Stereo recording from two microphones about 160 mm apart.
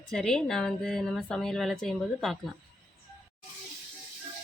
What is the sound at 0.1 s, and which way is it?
A woman's voice, 5° left (ahead or behind).